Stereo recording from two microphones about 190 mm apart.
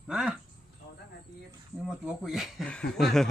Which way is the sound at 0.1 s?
5° right (ahead or behind).